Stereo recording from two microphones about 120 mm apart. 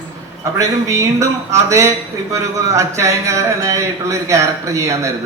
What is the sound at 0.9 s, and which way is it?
Speech, 25° right (ahead or behind).